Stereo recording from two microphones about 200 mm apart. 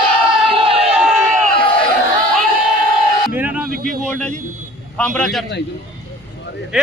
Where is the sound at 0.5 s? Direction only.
30° right (ahead or behind).